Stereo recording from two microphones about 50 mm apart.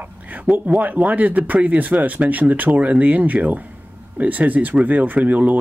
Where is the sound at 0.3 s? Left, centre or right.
Right.